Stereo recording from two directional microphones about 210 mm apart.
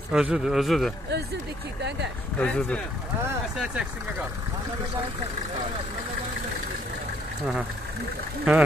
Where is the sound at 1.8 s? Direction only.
55° right (ahead or behind).